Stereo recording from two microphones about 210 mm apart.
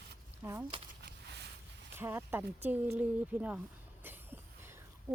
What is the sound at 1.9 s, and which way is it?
Speech, 10° right (ahead or behind).